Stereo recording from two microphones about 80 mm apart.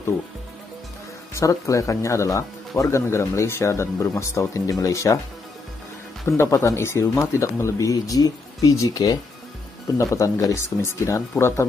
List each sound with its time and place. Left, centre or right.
1.3 s speech: left
6.2 s speech: left
10.1 s speech: left